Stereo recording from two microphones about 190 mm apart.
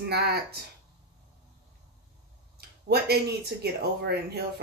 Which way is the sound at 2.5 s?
55° right (ahead or behind).